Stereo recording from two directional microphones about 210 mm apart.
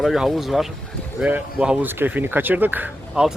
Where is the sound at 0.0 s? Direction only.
Centre (ahead or behind).